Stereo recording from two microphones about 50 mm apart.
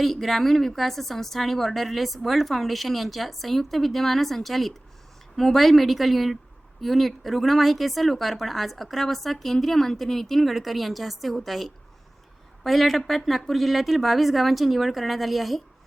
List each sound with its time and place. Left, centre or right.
0.0 s speech: centre